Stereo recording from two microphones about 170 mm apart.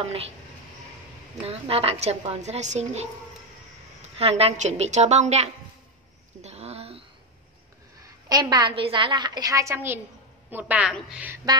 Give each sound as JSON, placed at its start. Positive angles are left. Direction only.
{"t": 0.0, "sound": "a woman's voice", "side_deg": -35}
{"t": 1.4, "sound": "a woman's voice", "side_deg": -35}
{"t": 4.2, "sound": "a woman's voice", "side_deg": -35}
{"t": 6.4, "sound": "a sound", "side_deg": -40}
{"t": 8.0, "sound": "a woman's voice", "side_deg": -25}